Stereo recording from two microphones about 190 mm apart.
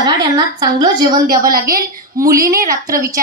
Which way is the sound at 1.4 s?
50° right (ahead or behind).